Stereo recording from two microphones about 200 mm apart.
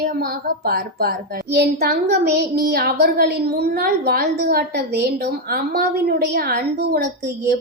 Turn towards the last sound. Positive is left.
turn(degrees=-50)  # may be behind; listen again after turning